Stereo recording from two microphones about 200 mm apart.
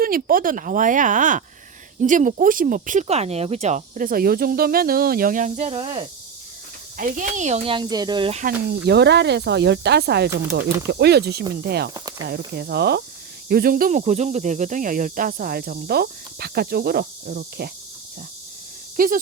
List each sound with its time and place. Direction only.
0.0 s speech: 45° right (ahead or behind); by 6.1 s 30° right (ahead or behind)
6.9 s speech: 40° right (ahead or behind)
8.4 s speech: 55° right (ahead or behind)
18.9 s speech: 45° right (ahead or behind)